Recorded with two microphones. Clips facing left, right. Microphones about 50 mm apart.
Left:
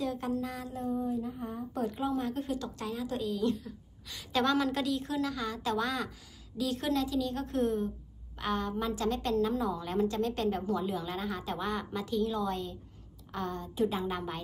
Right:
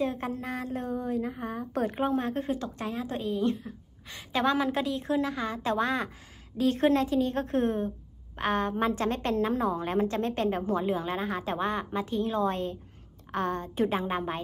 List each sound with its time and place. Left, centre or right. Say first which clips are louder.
0.0 s a woman's voice: right 2 dB; right
0.8 s a woman's voice: left 1 dB; right
1.9 s a woman's voice: right 4 dB; right